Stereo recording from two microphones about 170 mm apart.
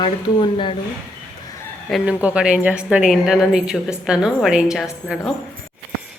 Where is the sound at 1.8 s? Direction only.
5° right (ahead or behind).